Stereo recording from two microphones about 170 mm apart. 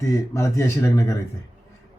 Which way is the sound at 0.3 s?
15° left (ahead or behind).